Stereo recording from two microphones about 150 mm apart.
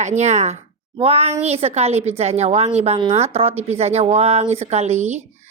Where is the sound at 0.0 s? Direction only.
50° right (ahead or behind).